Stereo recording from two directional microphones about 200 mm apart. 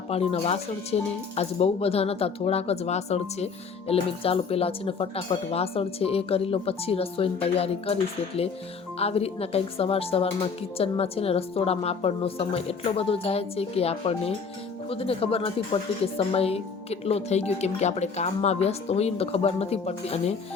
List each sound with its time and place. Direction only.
0.1 s a woman's voice: 30° left (ahead or behind)
9.0 s a woman's voice: 30° left (ahead or behind)